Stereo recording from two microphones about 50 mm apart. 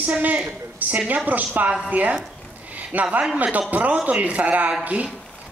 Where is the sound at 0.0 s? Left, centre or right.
Right.